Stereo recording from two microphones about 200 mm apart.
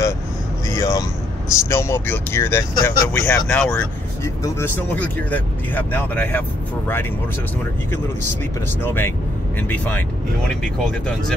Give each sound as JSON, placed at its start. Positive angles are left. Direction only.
{"t": 0.7, "sound": "vehicle", "side_deg": 15}
{"t": 1.6, "sound": "speech", "side_deg": 15}
{"t": 8.8, "sound": "speech", "side_deg": 10}